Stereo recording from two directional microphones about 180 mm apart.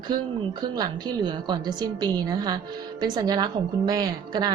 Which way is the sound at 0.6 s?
25° right (ahead or behind).